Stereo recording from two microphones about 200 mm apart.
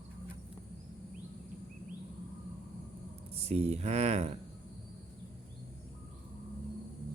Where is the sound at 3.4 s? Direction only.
30° right (ahead or behind).